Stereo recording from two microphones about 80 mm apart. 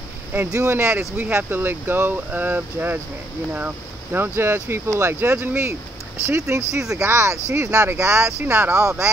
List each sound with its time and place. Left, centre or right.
0.5 s speech: right